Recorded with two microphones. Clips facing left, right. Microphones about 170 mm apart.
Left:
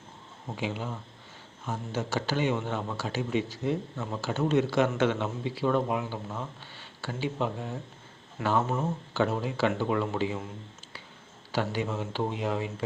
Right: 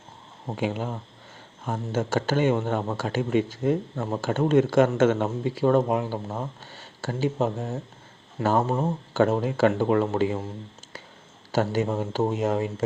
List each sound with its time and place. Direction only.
0.4 s a man's voice: 50° right (ahead or behind)
11.5 s a man's voice: 45° right (ahead or behind)